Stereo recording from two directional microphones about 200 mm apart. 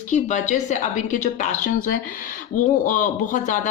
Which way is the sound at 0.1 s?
40° left (ahead or behind).